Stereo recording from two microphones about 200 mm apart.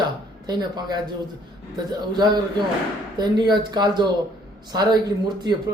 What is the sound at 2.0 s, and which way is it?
A man's voice, 20° right (ahead or behind).